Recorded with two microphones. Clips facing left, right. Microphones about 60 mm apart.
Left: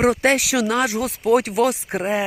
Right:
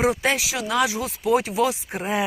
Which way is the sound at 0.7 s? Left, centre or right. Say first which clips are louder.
Left 2 dB; left.